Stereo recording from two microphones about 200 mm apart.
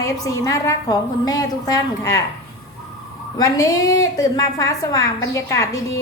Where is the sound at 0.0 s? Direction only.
15° left (ahead or behind).